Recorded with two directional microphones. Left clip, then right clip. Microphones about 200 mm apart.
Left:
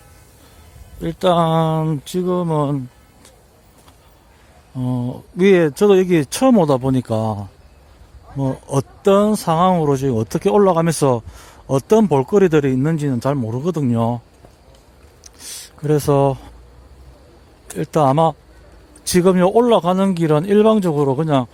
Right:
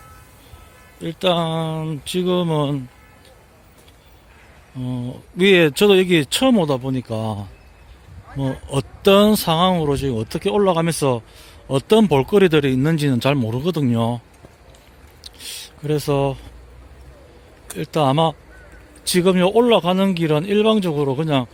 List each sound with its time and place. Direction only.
1.0 s speech: 15° left (ahead or behind)
2.1 s speech: 5° left (ahead or behind)
4.8 s speech: 20° left (ahead or behind)
5.4 s speech: 5° left (ahead or behind)
8.4 s speech: 15° left (ahead or behind)
9.0 s speech: centre (ahead or behind)
9.4 s speech: 10° left (ahead or behind)
11.9 s speech: 5° left (ahead or behind)
15.8 s speech: 20° left (ahead or behind)
17.7 s speech: 15° left (ahead or behind)